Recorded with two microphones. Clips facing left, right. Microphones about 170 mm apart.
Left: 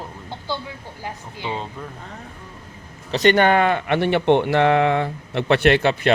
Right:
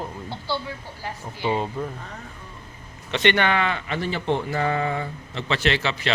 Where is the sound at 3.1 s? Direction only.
40° left (ahead or behind).